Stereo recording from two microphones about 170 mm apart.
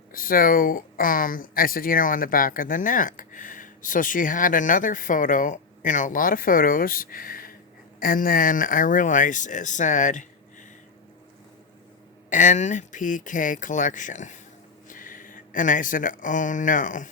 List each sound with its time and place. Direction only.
0.1 s speech: 55° left (ahead or behind)
12.3 s speech: 45° left (ahead or behind)